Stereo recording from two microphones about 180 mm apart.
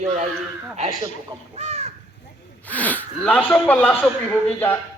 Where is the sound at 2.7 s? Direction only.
10° left (ahead or behind).